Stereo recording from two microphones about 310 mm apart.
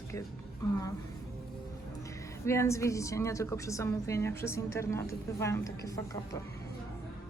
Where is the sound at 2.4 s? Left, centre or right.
Centre.